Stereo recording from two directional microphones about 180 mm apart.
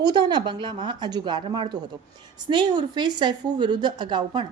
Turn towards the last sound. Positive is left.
turn(degrees=-25)  # may be behind; listen again after turning